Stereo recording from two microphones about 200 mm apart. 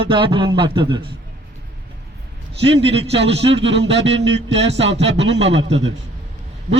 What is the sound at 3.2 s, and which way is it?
A man's voice, 60° right (ahead or behind).